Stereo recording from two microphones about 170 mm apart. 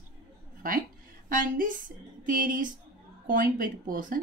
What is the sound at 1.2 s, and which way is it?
Speech, 55° right (ahead or behind).